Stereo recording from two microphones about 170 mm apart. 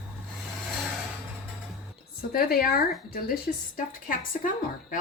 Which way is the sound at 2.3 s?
60° left (ahead or behind).